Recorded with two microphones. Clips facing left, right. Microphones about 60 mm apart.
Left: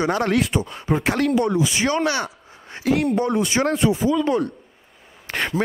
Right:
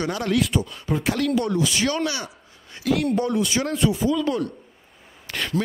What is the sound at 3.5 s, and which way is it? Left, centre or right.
Speech, left.